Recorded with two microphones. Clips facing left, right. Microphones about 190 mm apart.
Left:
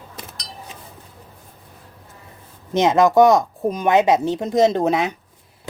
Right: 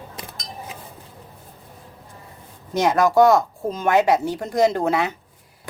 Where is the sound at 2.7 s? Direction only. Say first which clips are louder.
Left 2 dB; 20° left (ahead or behind).